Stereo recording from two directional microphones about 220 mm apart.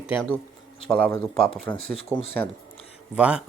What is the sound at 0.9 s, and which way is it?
Speech, 5° left (ahead or behind).